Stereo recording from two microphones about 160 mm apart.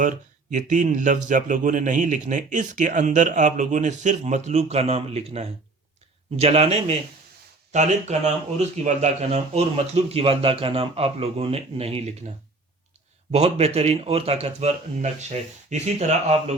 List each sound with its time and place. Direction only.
0.0 s speech: 55° right (ahead or behind)
13.3 s speech: 40° right (ahead or behind)